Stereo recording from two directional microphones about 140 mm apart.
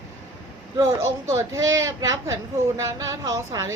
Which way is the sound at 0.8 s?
20° right (ahead or behind).